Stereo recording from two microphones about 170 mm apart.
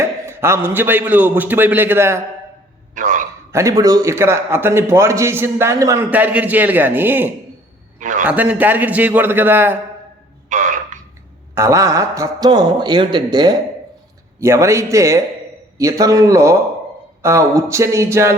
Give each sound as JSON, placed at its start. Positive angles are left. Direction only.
{"t": 0.0, "sound": "a man's voice", "side_deg": -15}
{"t": 2.9, "sound": "a sound", "side_deg": -50}
{"t": 3.5, "sound": "a man's voice", "side_deg": -20}
{"t": 7.9, "sound": "a man's voice", "side_deg": -50}
{"t": 8.3, "sound": "a man's voice", "side_deg": -10}
{"t": 10.5, "sound": "a sound", "side_deg": -50}
{"t": 11.5, "sound": "a man's voice", "side_deg": -15}